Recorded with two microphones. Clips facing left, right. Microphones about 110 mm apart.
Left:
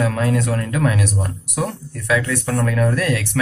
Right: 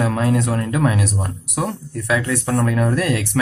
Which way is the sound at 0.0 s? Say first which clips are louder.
Right 1 dB; 20° right (ahead or behind).